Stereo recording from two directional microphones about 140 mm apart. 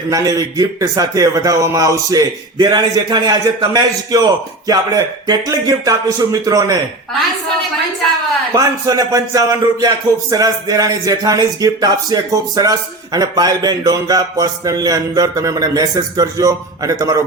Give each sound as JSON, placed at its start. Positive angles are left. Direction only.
{"t": 0.1, "sound": "a man's voice", "side_deg": -25}
{"t": 8.5, "sound": "a man's voice", "side_deg": -25}